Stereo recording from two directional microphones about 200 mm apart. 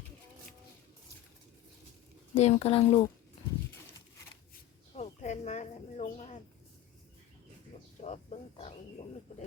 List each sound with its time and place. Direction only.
2.4 s speech: 30° left (ahead or behind)
4.9 s speech: 35° left (ahead or behind)
8.0 s speech: 35° left (ahead or behind)